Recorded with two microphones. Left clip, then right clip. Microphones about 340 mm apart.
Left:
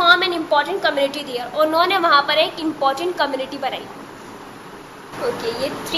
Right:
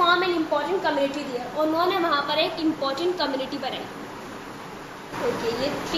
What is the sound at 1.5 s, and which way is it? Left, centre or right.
Speech, left.